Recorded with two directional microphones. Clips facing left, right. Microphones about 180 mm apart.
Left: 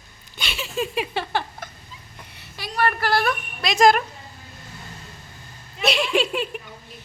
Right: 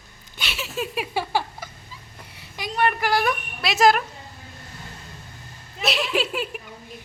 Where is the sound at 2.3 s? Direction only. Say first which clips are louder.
Right 1 dB; 20° right (ahead or behind); by 4.0 s 5° right (ahead or behind).